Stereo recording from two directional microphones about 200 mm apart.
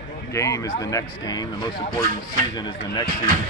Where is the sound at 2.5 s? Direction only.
20° left (ahead or behind).